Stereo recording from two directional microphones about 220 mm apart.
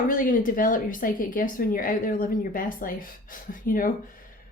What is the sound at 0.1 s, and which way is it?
A woman's voice, 40° left (ahead or behind).